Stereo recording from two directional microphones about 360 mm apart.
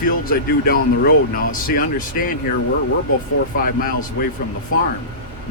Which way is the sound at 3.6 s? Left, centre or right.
Left.